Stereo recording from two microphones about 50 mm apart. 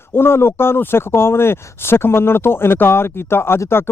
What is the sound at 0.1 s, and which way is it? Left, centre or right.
Speech, left.